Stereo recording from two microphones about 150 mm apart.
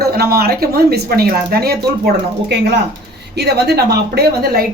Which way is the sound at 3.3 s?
90° right.